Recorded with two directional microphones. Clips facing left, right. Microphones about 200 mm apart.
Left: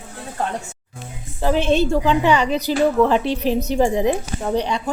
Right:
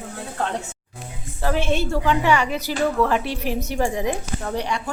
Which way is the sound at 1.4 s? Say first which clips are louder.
Left 5 dB; 20° left (ahead or behind).